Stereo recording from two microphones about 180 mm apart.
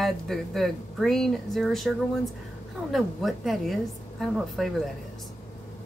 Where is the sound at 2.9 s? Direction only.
Centre (ahead or behind).